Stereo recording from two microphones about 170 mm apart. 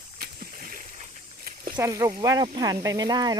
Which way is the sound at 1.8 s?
20° right (ahead or behind).